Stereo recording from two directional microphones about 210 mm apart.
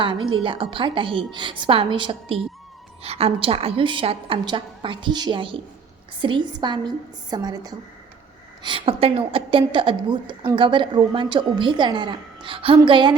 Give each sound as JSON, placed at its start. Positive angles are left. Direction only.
{"t": 0.0, "sound": "a woman's voice", "side_deg": -25}